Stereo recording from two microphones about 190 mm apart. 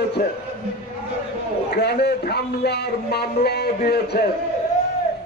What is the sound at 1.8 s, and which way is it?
A man's voice, 60° left (ahead or behind).